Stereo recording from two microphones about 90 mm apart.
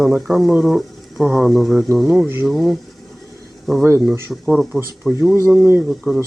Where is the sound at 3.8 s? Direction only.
25° right (ahead or behind).